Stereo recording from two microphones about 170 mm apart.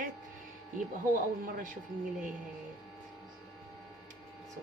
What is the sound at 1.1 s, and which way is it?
Speech, 55° right (ahead or behind).